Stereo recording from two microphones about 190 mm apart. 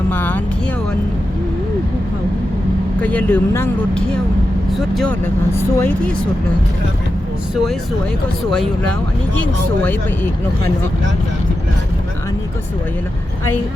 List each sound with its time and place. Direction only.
0.1 s speech: 10° left (ahead or behind)
3.0 s speech: 10° left (ahead or behind)
8.4 s speech: centre (ahead or behind)